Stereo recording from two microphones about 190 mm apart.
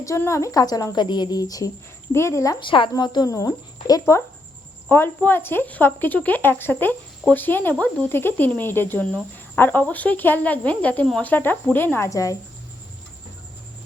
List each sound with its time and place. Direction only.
0.0 s a woman's voice: 15° left (ahead or behind)